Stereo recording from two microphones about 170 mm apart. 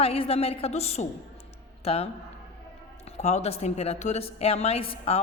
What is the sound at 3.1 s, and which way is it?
A woman's voice, 40° left (ahead or behind).